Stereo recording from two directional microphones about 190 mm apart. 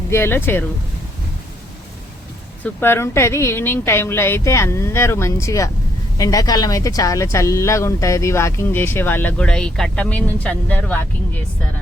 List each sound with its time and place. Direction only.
0.1 s speech: 10° left (ahead or behind)
2.6 s speech: 10° left (ahead or behind)